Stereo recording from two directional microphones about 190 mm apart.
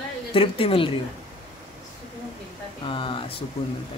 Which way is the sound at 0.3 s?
30° left (ahead or behind).